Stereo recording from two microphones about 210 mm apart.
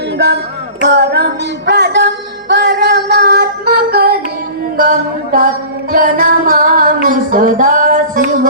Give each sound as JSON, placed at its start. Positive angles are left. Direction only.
{"t": 0.9, "sound": "music", "side_deg": -50}